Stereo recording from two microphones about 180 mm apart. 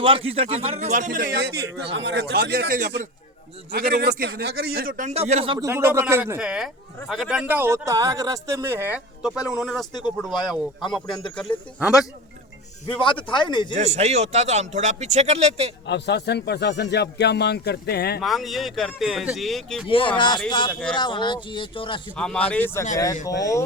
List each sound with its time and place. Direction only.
0.0 s a man's voice: 30° right (ahead or behind)
5.5 s speech: 15° right (ahead or behind); by 11.0 s centre (ahead or behind)
13.0 s speech: 25° left (ahead or behind)
13.7 s speech: 35° right (ahead or behind)
15.9 s a man's voice: 70° left (ahead or behind)
18.2 s speech: centre (ahead or behind)
19.9 s speech: 30° left (ahead or behind)
22.1 s speech: 5° left (ahead or behind)